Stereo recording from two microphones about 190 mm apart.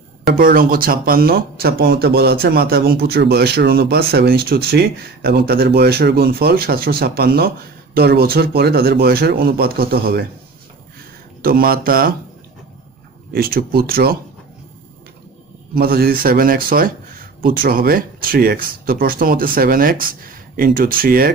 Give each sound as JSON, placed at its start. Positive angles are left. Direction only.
{"t": 0.3, "sound": "speech", "side_deg": -50}
{"t": 11.4, "sound": "speech", "side_deg": -50}
{"t": 13.3, "sound": "speech", "side_deg": -55}
{"t": 15.7, "sound": "speech", "side_deg": -50}